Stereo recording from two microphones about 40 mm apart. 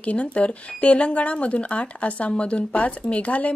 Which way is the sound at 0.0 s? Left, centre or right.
Left.